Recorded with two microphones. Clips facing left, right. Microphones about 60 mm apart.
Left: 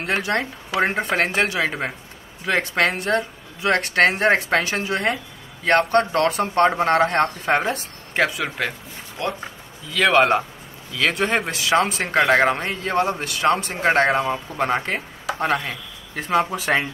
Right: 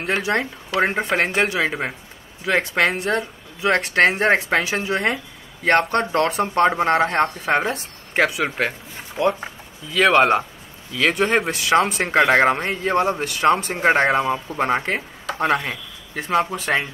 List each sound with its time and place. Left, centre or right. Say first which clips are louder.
0.0 s speech: right 1 dB; centre
8.1 s speech: right 2 dB; right
10.1 s speech: right 1 dB; centre
11.3 s speech: right 2 dB; centre
12.0 s speech: right 1 dB; right; by 16.9 s centre